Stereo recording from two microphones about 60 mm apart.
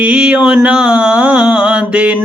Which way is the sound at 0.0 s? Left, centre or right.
Centre.